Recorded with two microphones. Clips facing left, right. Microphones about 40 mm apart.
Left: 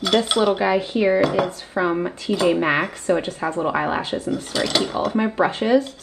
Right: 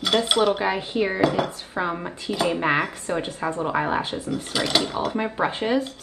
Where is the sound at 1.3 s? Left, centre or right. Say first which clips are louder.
Left 4 dB; left.